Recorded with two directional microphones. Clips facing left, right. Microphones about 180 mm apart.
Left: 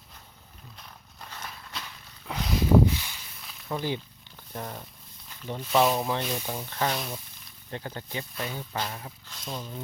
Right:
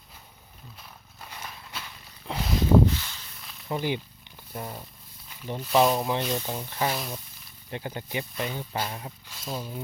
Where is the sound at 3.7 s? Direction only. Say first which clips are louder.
Right 2 dB; 15° right (ahead or behind).